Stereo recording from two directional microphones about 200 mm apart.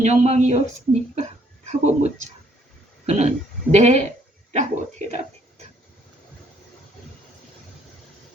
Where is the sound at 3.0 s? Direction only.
35° right (ahead or behind).